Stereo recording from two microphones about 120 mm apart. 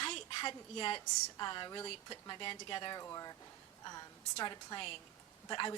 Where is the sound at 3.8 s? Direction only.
35° left (ahead or behind).